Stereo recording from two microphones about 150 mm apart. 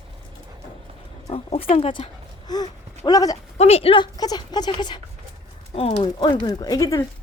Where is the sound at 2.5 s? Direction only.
25° left (ahead or behind).